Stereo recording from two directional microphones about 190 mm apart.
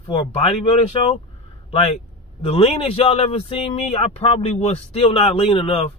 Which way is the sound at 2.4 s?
30° left (ahead or behind).